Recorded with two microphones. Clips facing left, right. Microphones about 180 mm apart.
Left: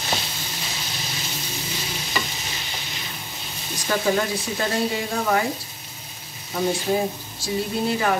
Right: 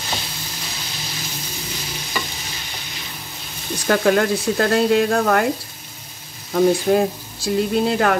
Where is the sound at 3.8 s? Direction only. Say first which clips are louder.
Right 6 dB; 70° right (ahead or behind).